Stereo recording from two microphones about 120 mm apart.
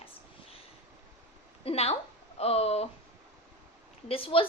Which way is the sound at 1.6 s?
60° left (ahead or behind).